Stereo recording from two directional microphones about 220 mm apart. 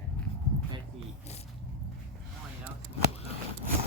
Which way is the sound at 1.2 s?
30° left (ahead or behind).